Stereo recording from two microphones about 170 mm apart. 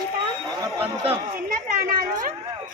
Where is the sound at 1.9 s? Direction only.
60° right (ahead or behind).